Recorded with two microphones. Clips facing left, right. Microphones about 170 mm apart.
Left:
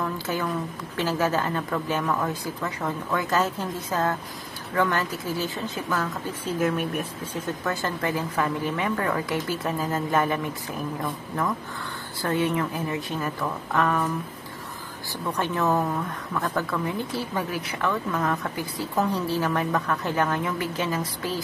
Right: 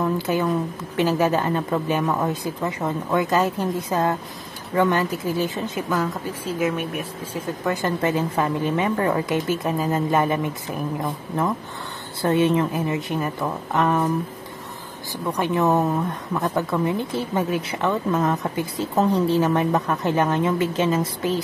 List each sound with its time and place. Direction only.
0.0 s speech: 20° right (ahead or behind)
7.6 s speech: 20° right (ahead or behind)
15.2 s speech: 15° right (ahead or behind)